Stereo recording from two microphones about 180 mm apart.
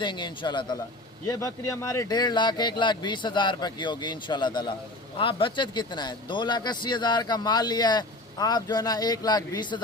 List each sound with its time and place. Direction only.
0.0 s speech: 25° left (ahead or behind)